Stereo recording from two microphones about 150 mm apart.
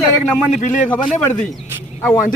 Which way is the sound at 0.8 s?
10° left (ahead or behind).